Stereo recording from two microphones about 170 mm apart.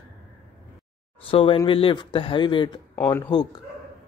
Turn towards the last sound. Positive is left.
turn(degrees=15)  # may be behind; listen again after turning